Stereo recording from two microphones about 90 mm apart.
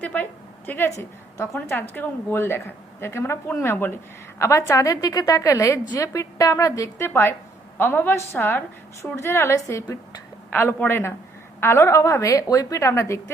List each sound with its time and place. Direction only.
0.0 s a sound: 20° left (ahead or behind)
0.9 s a woman's voice: 35° left (ahead or behind)
1.5 s a woman's voice: 25° left (ahead or behind)
7.1 s a woman's voice: 25° left (ahead or behind)